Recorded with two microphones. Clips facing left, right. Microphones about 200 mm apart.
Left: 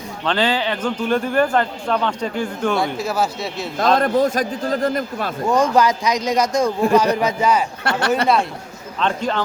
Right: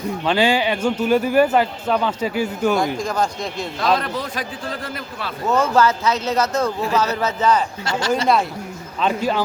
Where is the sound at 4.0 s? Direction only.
45° left (ahead or behind).